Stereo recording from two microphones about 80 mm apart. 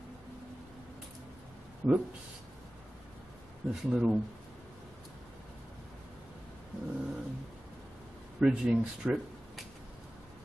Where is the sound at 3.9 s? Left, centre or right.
Centre.